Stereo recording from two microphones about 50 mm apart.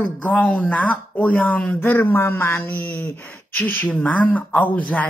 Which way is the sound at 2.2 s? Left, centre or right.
Left.